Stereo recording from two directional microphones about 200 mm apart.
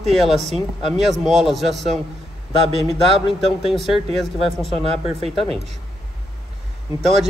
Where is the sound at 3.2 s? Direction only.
Centre (ahead or behind).